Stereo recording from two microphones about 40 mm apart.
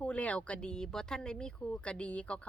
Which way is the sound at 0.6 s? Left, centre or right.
Centre.